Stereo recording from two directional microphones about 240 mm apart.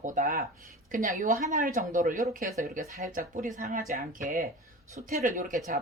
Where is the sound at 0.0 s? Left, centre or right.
Right.